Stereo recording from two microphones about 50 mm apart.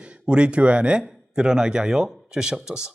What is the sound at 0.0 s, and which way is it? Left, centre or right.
A man's voice, right.